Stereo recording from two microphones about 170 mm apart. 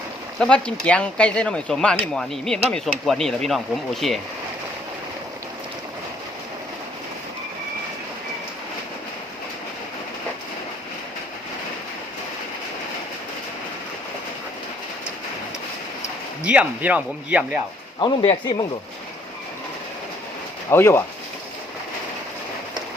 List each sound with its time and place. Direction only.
0.3 s speech: 5° left (ahead or behind)
16.4 s speech: 5° right (ahead or behind)
18.0 s speech: 25° left (ahead or behind)
20.7 s speech: 15° left (ahead or behind)